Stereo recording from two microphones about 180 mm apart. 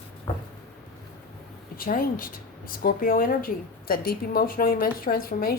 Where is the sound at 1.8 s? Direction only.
50° left (ahead or behind).